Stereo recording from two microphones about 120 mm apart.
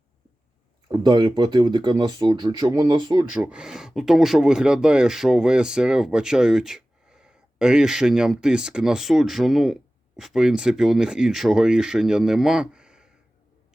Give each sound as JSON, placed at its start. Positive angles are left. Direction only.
{"t": 0.9, "sound": "speech", "side_deg": -35}
{"t": 3.3, "sound": "speech", "side_deg": -10}